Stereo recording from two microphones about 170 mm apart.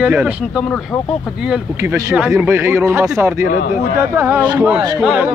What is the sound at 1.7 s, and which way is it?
Speech, 20° right (ahead or behind).